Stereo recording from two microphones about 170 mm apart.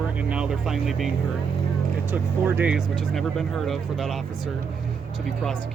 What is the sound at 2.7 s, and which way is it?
Speech, centre (ahead or behind).